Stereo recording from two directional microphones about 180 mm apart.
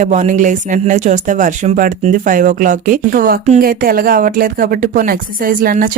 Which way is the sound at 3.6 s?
55° right (ahead or behind).